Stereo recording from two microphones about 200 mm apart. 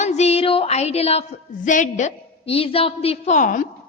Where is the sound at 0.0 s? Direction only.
35° left (ahead or behind).